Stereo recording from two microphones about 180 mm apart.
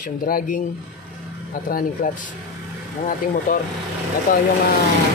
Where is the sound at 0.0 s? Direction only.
50° left (ahead or behind).